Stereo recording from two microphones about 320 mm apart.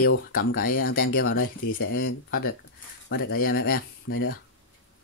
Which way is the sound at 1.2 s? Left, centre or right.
Left.